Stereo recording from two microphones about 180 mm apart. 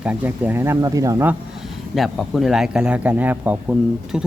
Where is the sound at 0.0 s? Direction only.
10° right (ahead or behind).